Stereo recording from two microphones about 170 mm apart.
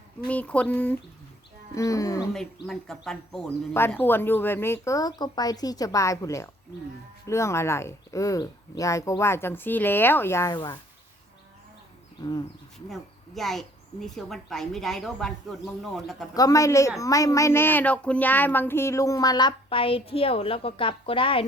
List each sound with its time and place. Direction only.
0.3 s speech: 10° left (ahead or behind)
1.7 s speech: 20° left (ahead or behind)
2.3 s speech: 5° left (ahead or behind); by 10.8 s 25° left (ahead or behind)
12.9 s speech: centre (ahead or behind)
16.3 s speech: 20° left (ahead or behind)